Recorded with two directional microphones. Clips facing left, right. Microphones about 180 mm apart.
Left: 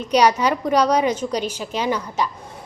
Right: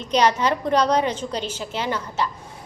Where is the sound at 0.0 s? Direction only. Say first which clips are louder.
Left 3 dB; 10° left (ahead or behind).